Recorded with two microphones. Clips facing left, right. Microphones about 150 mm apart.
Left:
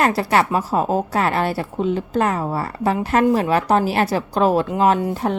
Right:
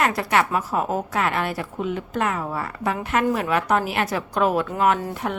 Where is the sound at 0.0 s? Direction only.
35° left (ahead or behind).